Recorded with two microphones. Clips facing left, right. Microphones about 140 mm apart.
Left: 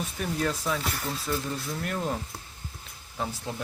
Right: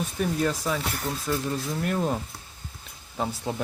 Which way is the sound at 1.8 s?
10° right (ahead or behind).